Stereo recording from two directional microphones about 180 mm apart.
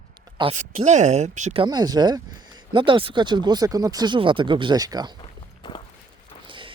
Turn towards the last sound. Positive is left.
turn(degrees=-25)  # may be behind; listen again after turning